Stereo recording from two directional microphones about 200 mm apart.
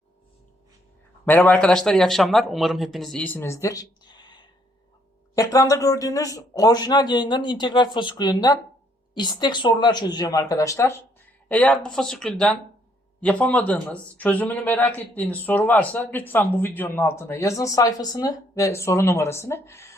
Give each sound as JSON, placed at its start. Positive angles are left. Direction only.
{"t": 1.2, "sound": "a man's voice", "side_deg": 10}